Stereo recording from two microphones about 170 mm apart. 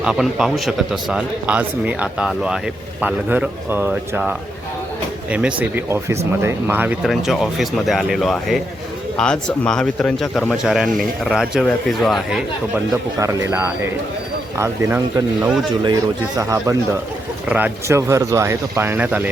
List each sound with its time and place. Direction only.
0.0 s a man's voice: 5° right (ahead or behind)
7.1 s a man's voice: centre (ahead or behind)
12.7 s speech: 20° right (ahead or behind)